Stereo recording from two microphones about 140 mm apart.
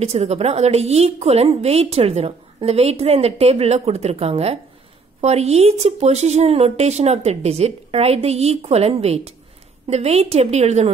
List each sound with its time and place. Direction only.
0.0 s a woman's voice: 50° right (ahead or behind)